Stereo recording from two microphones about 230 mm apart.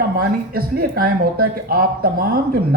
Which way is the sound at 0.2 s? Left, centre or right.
Right.